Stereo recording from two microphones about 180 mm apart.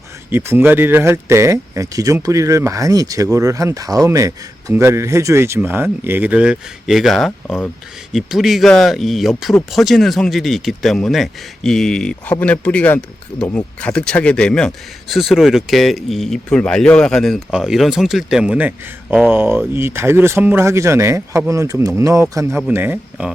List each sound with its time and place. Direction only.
0.3 s a man's voice: 10° right (ahead or behind)